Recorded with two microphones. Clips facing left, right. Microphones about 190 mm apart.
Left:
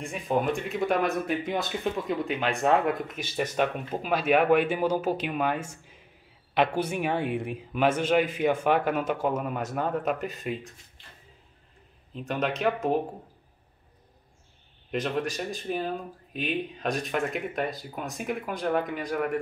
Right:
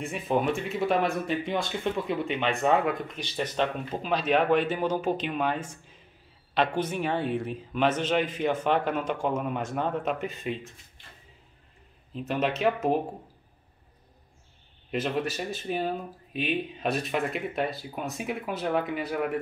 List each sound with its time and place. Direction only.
0.0 s speech: centre (ahead or behind)
12.1 s speech: centre (ahead or behind)
14.9 s speech: 5° right (ahead or behind)